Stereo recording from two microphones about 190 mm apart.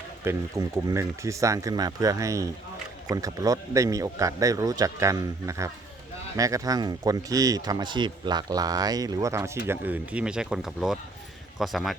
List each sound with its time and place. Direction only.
0.2 s a man's voice: 15° right (ahead or behind)